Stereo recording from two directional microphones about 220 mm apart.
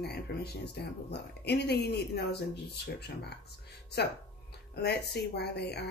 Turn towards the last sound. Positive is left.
turn(degrees=50)  # may be behind; listen again after turning